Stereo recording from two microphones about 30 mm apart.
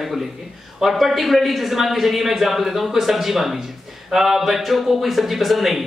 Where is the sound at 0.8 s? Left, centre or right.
Centre.